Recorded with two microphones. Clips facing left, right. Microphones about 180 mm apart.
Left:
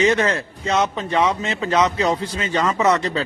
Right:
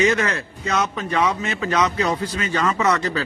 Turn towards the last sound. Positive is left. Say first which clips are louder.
# left 2 dB
turn(degrees=25)  # may be behind; listen again after turning